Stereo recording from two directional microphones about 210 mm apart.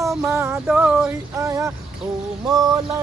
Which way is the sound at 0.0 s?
Centre (ahead or behind).